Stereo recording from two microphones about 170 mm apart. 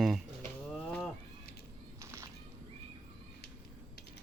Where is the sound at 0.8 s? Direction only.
5° left (ahead or behind).